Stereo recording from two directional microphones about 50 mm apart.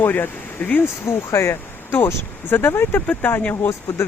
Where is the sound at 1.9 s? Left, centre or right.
Left.